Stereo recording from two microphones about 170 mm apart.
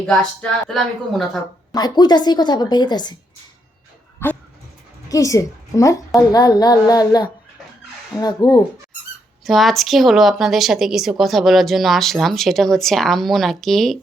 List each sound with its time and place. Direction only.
0.0 s a woman's voice: 5° left (ahead or behind)
1.7 s a woman's voice: 25° left (ahead or behind)
4.2 s dog: 15° left (ahead or behind)
5.0 s a woman's voice: 20° left (ahead or behind)
9.4 s a woman's voice: centre (ahead or behind)